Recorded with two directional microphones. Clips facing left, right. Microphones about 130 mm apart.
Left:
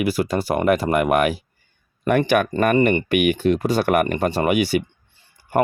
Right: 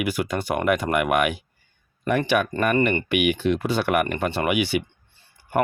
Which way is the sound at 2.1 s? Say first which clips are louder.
Left 4 dB; 55° left (ahead or behind).